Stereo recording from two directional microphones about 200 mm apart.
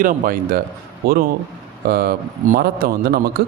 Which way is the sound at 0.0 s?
45° right (ahead or behind).